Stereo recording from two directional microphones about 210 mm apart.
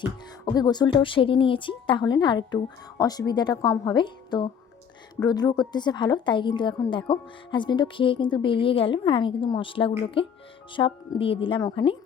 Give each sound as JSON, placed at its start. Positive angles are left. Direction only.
{"t": 0.4, "sound": "a woman's voice", "side_deg": 20}